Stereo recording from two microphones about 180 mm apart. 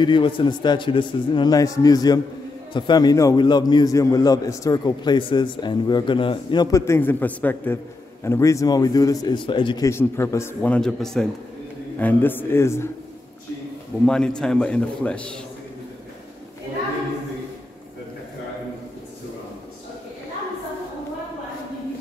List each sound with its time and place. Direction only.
0.0 s a man's voice: 25° left (ahead or behind)
9.8 s a man's voice: 15° left (ahead or behind)
14.0 s a man's voice: 5° left (ahead or behind)